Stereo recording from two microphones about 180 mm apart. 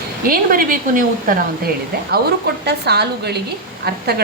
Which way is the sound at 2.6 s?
65° right (ahead or behind).